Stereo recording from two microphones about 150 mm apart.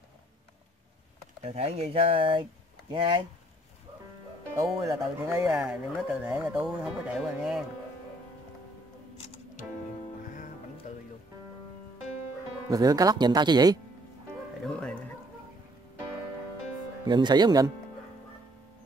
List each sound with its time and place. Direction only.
1.4 s speech: 45° right (ahead or behind)
4.7 s speech: 20° right (ahead or behind); by 7.6 s 5° right (ahead or behind)
9.2 s music: 50° left (ahead or behind)
10.2 s music: 60° left (ahead or behind)
12.6 s speech: 25° right (ahead or behind)
14.6 s music: 5° left (ahead or behind)
17.0 s speech: 30° right (ahead or behind)